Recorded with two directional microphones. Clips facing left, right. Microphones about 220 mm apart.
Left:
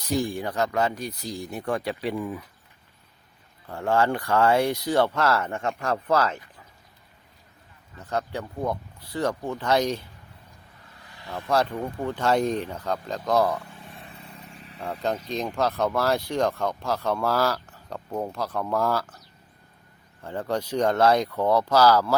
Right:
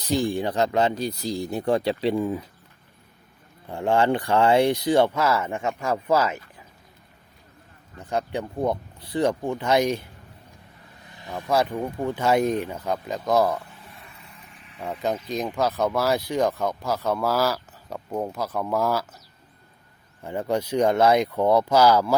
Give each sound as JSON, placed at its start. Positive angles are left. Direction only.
{"t": 0.3, "sound": "speech", "side_deg": -20}
{"t": 3.7, "sound": "speech", "side_deg": -20}
{"t": 7.9, "sound": "speech", "side_deg": -15}
{"t": 11.0, "sound": "speech", "side_deg": -20}
{"t": 13.9, "sound": "vehicle", "side_deg": 30}
{"t": 14.8, "sound": "speech", "side_deg": -5}
{"t": 20.2, "sound": "speech", "side_deg": -10}